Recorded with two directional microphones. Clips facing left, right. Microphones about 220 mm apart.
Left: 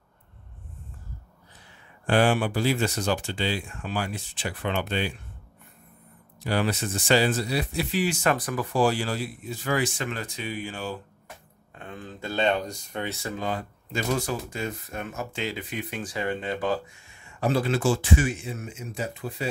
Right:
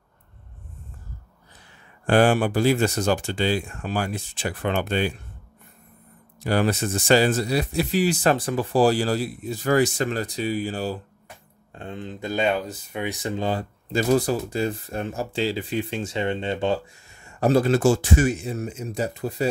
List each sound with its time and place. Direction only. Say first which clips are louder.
2.0 s speech: right 4 dB; 45° right (ahead or behind)
6.4 s speech: right 4 dB; 45° right (ahead or behind); by 16.9 s 25° right (ahead or behind)
17.1 s speech: right 6 dB; 40° right (ahead or behind)